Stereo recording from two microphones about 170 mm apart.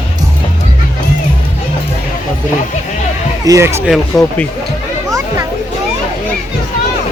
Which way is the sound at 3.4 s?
15° right (ahead or behind).